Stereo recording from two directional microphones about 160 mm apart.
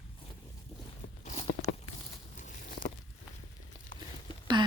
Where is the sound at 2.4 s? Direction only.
55° left (ahead or behind).